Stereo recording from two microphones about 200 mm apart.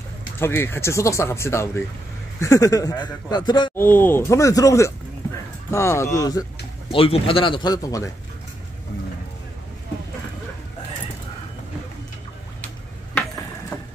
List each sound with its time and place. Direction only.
0.4 s speech: 10° left (ahead or behind)
3.7 s speech: 10° left (ahead or behind)
13.7 s boat: 10° left (ahead or behind)